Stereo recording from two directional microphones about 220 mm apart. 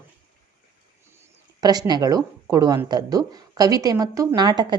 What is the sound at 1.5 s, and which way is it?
Speech, 20° right (ahead or behind).